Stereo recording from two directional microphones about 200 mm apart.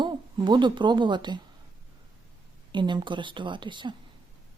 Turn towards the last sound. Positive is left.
turn(degrees=-25)  # may be behind; listen again after turning